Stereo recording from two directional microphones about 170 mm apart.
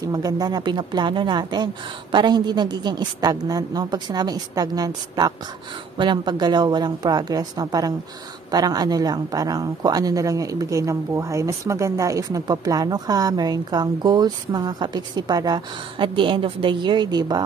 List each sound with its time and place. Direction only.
0.0 s a woman's voice: 20° right (ahead or behind)